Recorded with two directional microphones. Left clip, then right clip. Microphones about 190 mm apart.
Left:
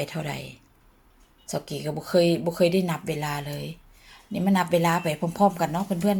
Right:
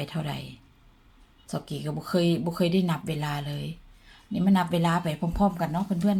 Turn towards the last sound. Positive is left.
turn(degrees=15)  # may be behind; listen again after turning